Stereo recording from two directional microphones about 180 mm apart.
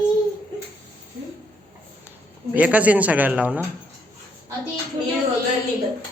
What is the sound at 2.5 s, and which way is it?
A man's voice, 10° right (ahead or behind).